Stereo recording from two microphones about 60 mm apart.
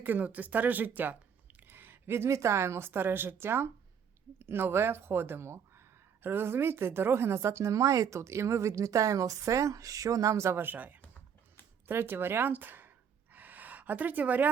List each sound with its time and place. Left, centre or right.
0.0 s a woman's voice: right
10.6 s speech: right
11.0 s typing: left
11.9 s speech: right
13.3 s gasp: right